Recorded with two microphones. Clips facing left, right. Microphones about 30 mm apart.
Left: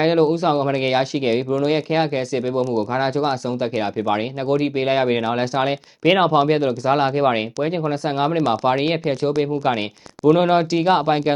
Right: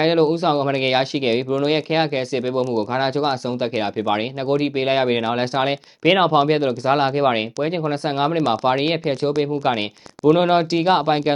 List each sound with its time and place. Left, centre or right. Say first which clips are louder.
0.0 s speech: even; right